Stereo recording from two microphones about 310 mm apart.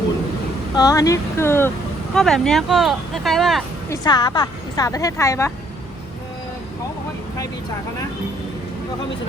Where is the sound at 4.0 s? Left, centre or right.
Centre.